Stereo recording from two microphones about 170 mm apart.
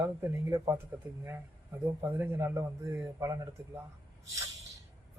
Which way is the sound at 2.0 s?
10° right (ahead or behind).